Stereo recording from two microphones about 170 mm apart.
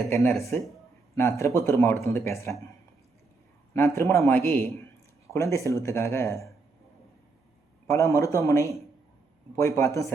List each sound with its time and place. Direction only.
0.3 s a man's voice: 15° left (ahead or behind)
3.8 s a man's voice: 15° left (ahead or behind)
7.9 s a man's voice: 15° left (ahead or behind)